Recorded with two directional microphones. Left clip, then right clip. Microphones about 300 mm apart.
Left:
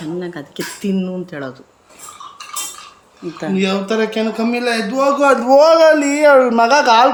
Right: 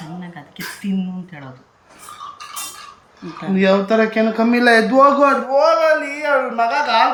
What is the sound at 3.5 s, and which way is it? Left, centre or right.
A man's voice, centre.